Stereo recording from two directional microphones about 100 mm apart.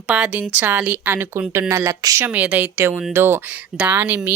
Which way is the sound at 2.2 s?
15° right (ahead or behind).